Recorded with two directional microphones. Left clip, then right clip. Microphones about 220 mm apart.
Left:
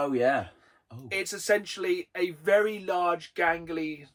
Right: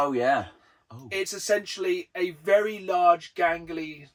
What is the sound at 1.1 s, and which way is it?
Speech, centre (ahead or behind).